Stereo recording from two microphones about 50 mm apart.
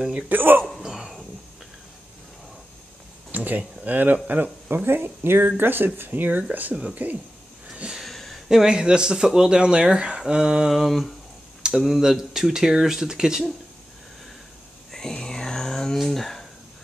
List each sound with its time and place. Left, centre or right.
0.3 s speech: right
0.7 s speech: centre
3.3 s speech: right
4.8 s speech: right
6.7 s speech: centre
8.0 s a sound: centre
8.5 s speech: centre
14.9 s a sound: centre